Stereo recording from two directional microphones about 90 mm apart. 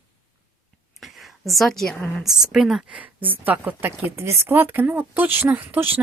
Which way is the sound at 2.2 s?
5° right (ahead or behind).